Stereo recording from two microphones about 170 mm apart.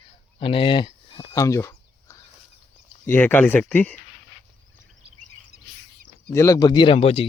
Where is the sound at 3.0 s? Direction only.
10° left (ahead or behind).